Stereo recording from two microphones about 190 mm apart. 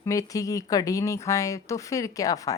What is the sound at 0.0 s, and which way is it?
A woman's voice, 15° left (ahead or behind).